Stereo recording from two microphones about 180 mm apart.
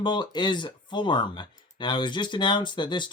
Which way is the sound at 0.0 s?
25° left (ahead or behind).